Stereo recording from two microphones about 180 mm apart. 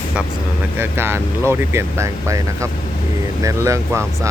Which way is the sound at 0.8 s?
15° right (ahead or behind).